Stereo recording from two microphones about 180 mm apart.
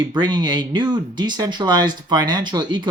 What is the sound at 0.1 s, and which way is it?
Speech, 25° right (ahead or behind).